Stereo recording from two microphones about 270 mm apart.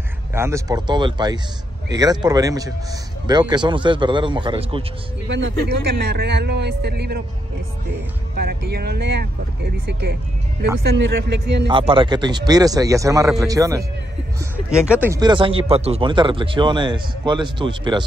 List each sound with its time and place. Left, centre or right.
0.3 s speech: centre
5.3 s a man's voice: right
8.4 s a man's voice: right
11.6 s speech: centre